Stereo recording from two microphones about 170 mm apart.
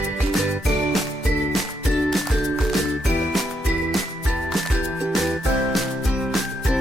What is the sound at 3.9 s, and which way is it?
Music, centre (ahead or behind).